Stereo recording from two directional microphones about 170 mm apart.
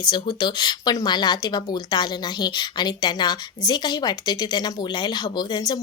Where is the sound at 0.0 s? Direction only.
25° left (ahead or behind).